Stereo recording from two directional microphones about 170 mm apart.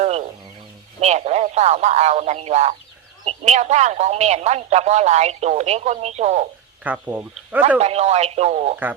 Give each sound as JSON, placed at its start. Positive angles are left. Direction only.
{"t": 0.0, "sound": "chicken", "side_deg": -40}
{"t": 1.0, "sound": "speech", "side_deg": -40}
{"t": 6.8, "sound": "speech", "side_deg": -10}
{"t": 7.8, "sound": "speech", "side_deg": -40}